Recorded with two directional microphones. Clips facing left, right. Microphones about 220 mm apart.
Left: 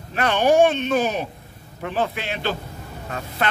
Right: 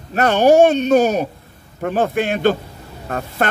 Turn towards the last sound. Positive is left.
turn(degrees=-45)  # may be behind; listen again after turning